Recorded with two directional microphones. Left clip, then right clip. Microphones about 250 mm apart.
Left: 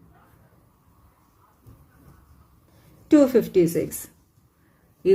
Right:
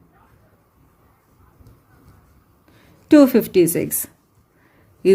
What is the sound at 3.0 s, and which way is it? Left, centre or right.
Speech, right.